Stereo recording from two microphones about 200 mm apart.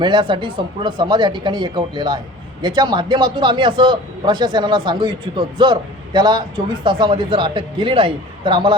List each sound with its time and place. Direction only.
0.0 s speech: 25° right (ahead or behind)